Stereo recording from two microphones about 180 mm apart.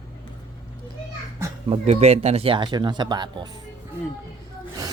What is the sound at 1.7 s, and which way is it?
Speech, 35° right (ahead or behind).